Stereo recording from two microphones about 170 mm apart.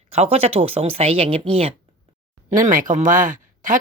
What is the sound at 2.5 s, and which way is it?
Speech, 50° right (ahead or behind).